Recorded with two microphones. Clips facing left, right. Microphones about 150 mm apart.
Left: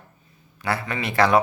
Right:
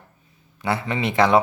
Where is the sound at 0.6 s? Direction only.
25° right (ahead or behind).